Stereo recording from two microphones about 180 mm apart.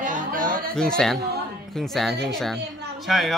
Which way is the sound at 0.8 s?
5° left (ahead or behind).